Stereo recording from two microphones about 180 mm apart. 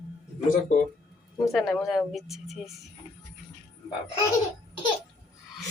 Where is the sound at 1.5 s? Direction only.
Centre (ahead or behind).